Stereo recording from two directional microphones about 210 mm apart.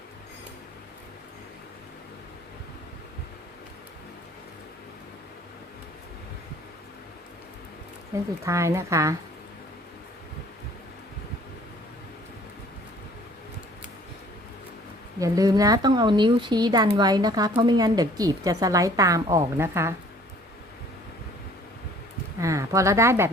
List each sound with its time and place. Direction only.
8.4 s speech: 15° right (ahead or behind)
15.2 s speech: 15° right (ahead or behind)
22.4 s speech: 15° right (ahead or behind)